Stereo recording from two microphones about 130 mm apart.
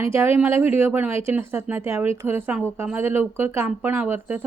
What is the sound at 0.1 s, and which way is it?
Speech, 20° right (ahead or behind).